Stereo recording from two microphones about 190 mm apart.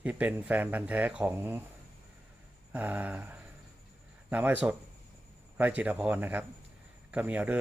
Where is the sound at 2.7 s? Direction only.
10° right (ahead or behind).